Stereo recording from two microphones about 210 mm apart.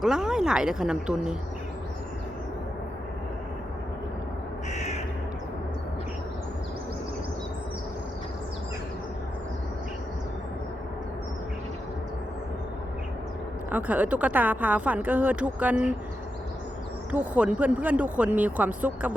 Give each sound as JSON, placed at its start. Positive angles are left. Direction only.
{"t": 0.0, "sound": "speech", "side_deg": -5}
{"t": 4.7, "sound": "crow", "side_deg": 35}
{"t": 13.7, "sound": "speech", "side_deg": -10}
{"t": 17.1, "sound": "speech", "side_deg": -5}